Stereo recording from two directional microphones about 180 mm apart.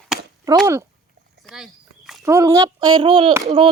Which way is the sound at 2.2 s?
15° right (ahead or behind).